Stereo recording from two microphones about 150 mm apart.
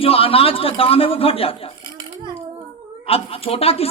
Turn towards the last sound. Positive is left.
turn(degrees=40)  # may be behind; listen again after turning